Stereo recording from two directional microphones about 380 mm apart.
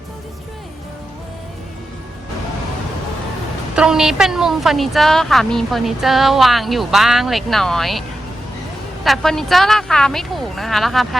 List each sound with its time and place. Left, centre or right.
3.8 s a woman's voice: centre
9.0 s a woman's voice: centre